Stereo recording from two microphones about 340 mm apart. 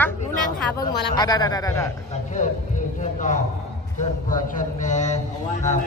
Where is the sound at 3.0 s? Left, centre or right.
Left.